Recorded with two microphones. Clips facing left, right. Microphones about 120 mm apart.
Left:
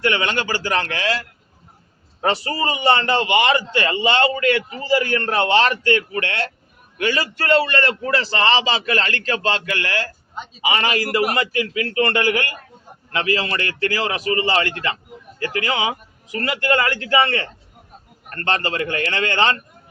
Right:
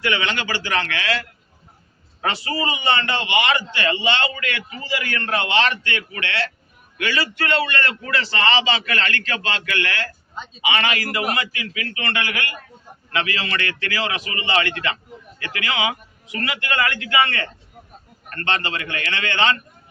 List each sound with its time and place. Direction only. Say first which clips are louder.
0.0 s a man's voice: left 3 dB; 45° left (ahead or behind)
2.2 s a man's voice: left 3 dB; 35° left (ahead or behind)